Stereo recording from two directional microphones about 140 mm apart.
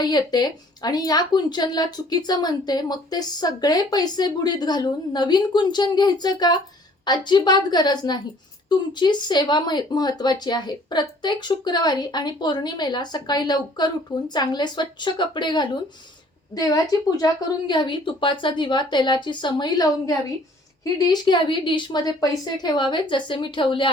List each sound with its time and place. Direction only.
0.0 s a woman's voice: 30° left (ahead or behind)